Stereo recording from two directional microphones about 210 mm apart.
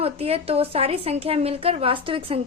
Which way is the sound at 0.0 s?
30° right (ahead or behind).